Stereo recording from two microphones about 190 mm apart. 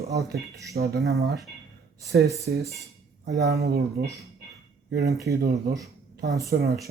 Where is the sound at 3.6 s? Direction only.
60° right (ahead or behind).